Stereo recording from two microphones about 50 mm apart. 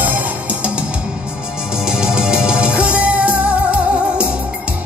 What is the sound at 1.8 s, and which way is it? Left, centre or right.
Music, centre.